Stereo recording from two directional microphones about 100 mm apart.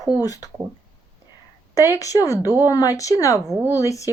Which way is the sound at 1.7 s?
35° left (ahead or behind).